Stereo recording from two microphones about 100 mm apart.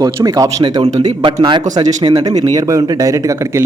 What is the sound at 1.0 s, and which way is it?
Speech, 85° right.